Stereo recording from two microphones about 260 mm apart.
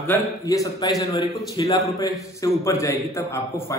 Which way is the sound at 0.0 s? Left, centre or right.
Centre.